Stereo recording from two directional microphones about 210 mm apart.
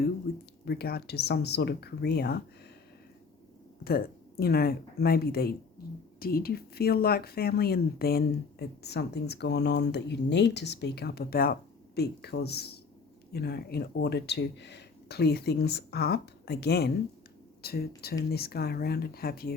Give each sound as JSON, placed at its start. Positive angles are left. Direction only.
{"t": 0.6, "sound": "speech", "side_deg": 50}
{"t": 3.8, "sound": "speech", "side_deg": 45}